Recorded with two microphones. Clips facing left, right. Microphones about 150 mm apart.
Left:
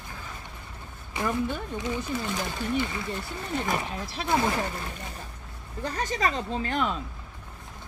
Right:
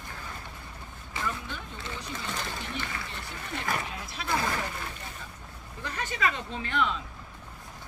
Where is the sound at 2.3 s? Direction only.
15° left (ahead or behind).